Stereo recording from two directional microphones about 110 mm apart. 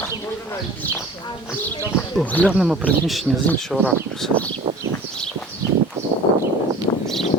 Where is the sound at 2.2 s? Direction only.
15° left (ahead or behind).